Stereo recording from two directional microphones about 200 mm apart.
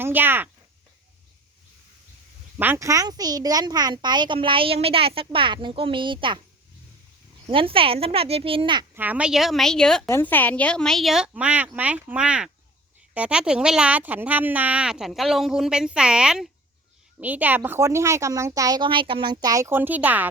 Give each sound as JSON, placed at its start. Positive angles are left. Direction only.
{"t": 0.0, "sound": "speech", "side_deg": -10}
{"t": 2.6, "sound": "speech", "side_deg": -10}
{"t": 7.4, "sound": "speech", "side_deg": -25}
{"t": 9.0, "sound": "a woman's voice", "side_deg": -5}